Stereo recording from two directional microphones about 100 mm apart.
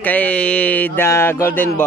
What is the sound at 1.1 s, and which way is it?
Speech, 25° left (ahead or behind).